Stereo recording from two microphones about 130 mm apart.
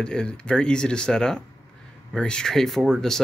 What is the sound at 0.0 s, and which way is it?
Speech, 5° left (ahead or behind).